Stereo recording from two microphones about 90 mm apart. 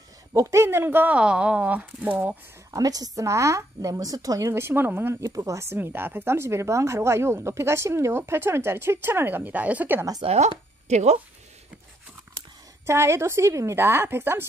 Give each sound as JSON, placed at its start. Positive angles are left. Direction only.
{"t": 0.3, "sound": "speech", "side_deg": -30}
{"t": 2.7, "sound": "a woman's voice", "side_deg": -45}
{"t": 5.2, "sound": "speech", "side_deg": -35}
{"t": 12.8, "sound": "speech", "side_deg": -30}